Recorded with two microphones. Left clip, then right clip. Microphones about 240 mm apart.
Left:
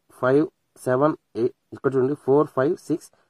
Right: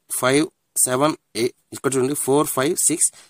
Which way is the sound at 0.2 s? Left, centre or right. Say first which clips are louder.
Right 1 dB; right.